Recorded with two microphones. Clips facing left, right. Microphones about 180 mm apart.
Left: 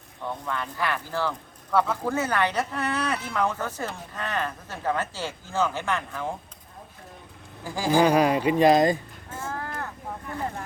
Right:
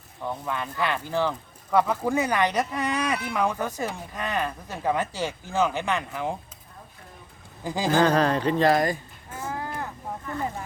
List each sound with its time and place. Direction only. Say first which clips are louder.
0.3 s speech: right 1 dB; 15° right (ahead or behind)
7.6 s speech: right 3 dB; 20° right (ahead or behind)
7.9 s speech: left 1 dB; 10° left (ahead or behind)
9.4 s crow: right 1 dB; 10° right (ahead or behind)